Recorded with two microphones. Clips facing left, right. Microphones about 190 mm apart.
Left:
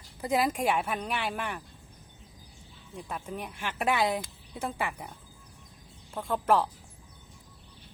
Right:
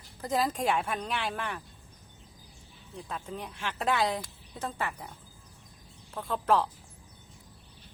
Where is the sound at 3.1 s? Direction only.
10° left (ahead or behind).